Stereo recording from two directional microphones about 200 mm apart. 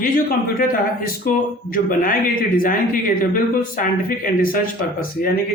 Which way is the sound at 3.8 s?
45° left (ahead or behind).